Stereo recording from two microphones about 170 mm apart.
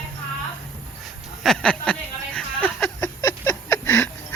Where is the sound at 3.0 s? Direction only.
20° left (ahead or behind).